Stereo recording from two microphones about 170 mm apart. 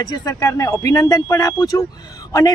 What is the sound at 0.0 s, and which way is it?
A man's voice, 20° left (ahead or behind).